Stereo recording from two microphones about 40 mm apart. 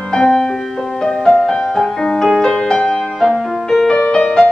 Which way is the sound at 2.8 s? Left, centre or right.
Centre.